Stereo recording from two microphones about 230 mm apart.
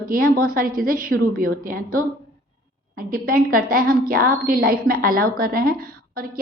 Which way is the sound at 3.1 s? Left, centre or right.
Right.